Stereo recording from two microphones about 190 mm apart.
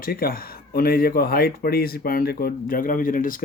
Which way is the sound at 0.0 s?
50° left (ahead or behind).